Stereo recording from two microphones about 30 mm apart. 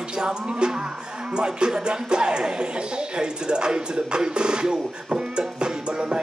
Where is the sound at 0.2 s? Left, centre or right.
Right.